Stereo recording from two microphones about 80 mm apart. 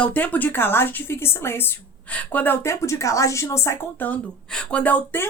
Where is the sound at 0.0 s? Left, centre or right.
Centre.